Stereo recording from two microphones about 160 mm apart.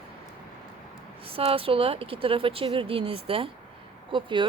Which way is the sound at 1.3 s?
35° right (ahead or behind).